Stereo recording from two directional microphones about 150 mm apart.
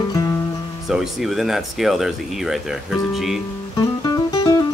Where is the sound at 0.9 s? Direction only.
Centre (ahead or behind).